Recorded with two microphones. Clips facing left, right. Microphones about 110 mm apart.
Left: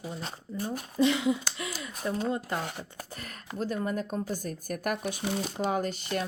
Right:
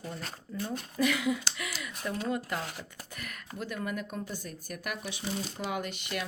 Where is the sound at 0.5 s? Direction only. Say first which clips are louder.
Left 1 dB; 25° left (ahead or behind).